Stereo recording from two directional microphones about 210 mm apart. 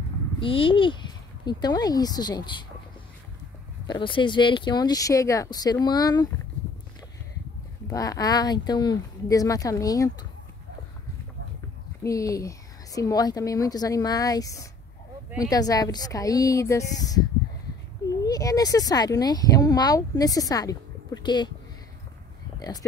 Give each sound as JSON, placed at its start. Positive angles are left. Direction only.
{"t": 0.4, "sound": "speech", "side_deg": 25}
{"t": 3.8, "sound": "speech", "side_deg": 20}
{"t": 7.9, "sound": "speech", "side_deg": 15}
{"t": 12.0, "sound": "speech", "side_deg": 15}
{"t": 18.2, "sound": "speech", "side_deg": 15}
{"t": 22.6, "sound": "speech", "side_deg": 20}